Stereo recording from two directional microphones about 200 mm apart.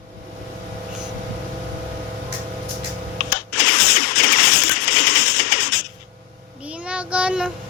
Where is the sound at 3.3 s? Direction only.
50° left (ahead or behind).